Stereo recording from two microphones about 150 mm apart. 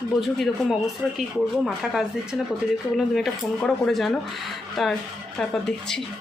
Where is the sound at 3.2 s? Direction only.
5° left (ahead or behind).